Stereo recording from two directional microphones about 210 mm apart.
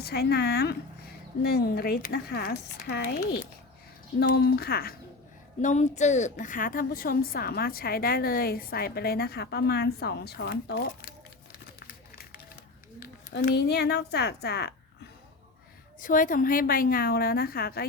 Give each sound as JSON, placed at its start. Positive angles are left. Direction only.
{"t": 0.0, "sound": "a woman's voice", "side_deg": 50}
{"t": 4.2, "sound": "a woman's voice", "side_deg": 50}
{"t": 5.6, "sound": "a woman's voice", "side_deg": 35}
{"t": 13.0, "sound": "speech", "side_deg": 50}
{"t": 16.0, "sound": "a woman's voice", "side_deg": 40}